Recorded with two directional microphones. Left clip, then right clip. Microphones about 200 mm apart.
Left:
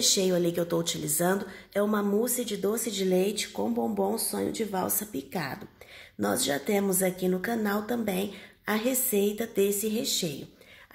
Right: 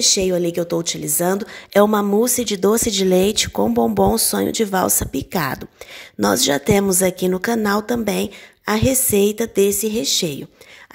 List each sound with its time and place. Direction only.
0.0 s speech: 35° right (ahead or behind)